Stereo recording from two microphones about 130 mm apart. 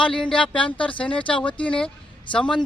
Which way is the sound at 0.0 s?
5° left (ahead or behind).